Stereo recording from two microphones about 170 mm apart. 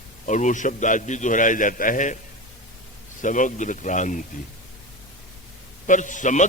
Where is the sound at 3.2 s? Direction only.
50° left (ahead or behind).